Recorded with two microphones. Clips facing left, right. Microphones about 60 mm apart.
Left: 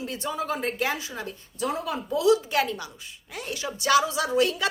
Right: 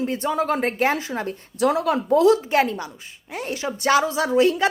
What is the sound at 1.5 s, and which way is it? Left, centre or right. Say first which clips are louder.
Speech: right 9 dB; right.